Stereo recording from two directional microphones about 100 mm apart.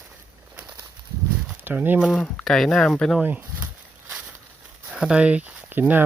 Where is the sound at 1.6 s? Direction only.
20° right (ahead or behind).